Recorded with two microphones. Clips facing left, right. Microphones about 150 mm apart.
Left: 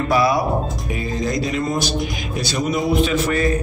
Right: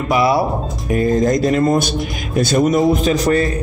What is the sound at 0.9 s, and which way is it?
Speech, 50° right (ahead or behind).